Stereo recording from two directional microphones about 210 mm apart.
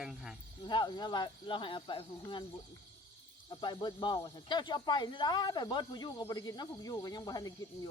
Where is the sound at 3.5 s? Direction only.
20° left (ahead or behind).